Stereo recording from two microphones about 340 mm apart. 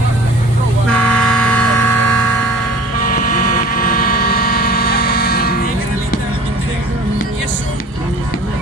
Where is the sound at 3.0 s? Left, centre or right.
Left.